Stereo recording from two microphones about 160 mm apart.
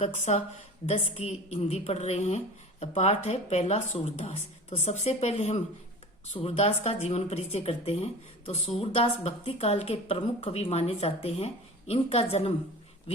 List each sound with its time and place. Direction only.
0.0 s speech: 45° left (ahead or behind)